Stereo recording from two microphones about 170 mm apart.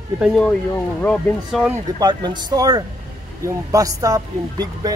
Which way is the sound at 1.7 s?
25° right (ahead or behind).